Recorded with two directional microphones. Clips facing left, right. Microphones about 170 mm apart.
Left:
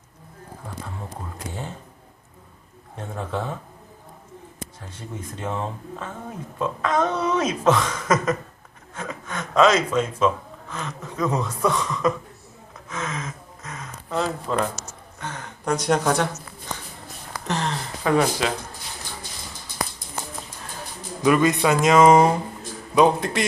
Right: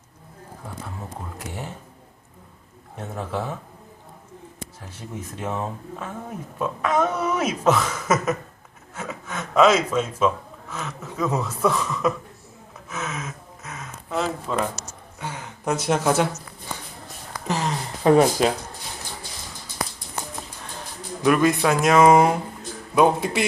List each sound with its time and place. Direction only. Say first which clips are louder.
1.4 s a sound: left 1 dB; 10° right (ahead or behind)
3.0 s speech: even; 5° right (ahead or behind)
4.9 s speech: right 1 dB; 10° right (ahead or behind)
12.9 s gasp: left 1 dB; 5° right (ahead or behind)
14.5 s speech: left 1 dB; centre (ahead or behind)
17.4 s a sound: right 1 dB; 5° right (ahead or behind)
18.0 s speech: right 5 dB; 35° right (ahead or behind)
21.2 s speech: even; centre (ahead or behind)